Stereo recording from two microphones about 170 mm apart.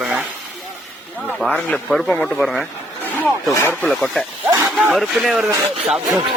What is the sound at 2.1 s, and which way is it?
Speech, 15° left (ahead or behind).